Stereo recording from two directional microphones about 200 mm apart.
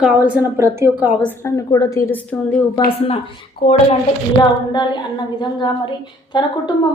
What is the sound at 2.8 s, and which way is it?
A woman's voice, 30° left (ahead or behind).